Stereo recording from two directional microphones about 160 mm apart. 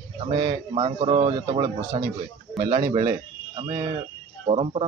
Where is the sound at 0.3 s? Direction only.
35° right (ahead or behind).